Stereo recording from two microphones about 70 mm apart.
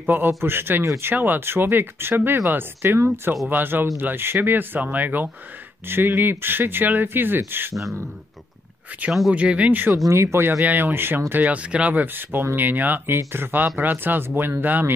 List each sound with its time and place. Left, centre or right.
0.0 s a man's voice: right
1.1 s speech: right
7.7 s speech: centre
9.3 s speech: centre
10.0 s speech: right
10.6 s speech: right